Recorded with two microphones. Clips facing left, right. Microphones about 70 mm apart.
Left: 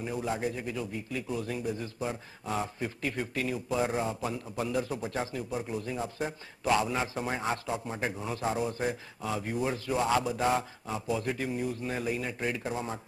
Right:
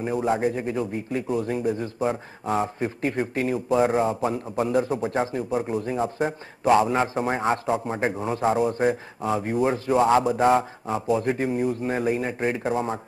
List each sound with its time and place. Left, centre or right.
0.0 s a man's voice: right